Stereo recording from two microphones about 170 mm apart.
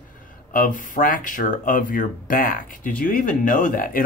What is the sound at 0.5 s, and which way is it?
Speech, 50° left (ahead or behind).